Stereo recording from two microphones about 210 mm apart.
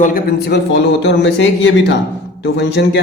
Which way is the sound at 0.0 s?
45° left (ahead or behind).